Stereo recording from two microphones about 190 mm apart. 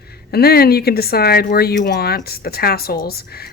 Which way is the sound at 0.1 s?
55° left (ahead or behind).